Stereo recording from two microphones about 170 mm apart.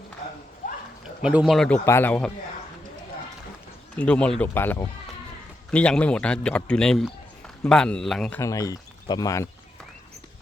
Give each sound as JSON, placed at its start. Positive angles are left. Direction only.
{"t": 1.0, "sound": "speech", "side_deg": -5}
{"t": 1.8, "sound": "speech", "side_deg": 15}
{"t": 3.9, "sound": "speech", "side_deg": 5}
{"t": 8.4, "sound": "speech", "side_deg": 20}